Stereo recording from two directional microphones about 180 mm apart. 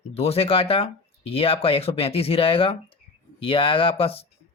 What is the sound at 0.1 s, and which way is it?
Speech, 35° left (ahead or behind).